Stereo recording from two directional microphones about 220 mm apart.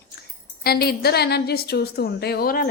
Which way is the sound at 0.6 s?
45° left (ahead or behind).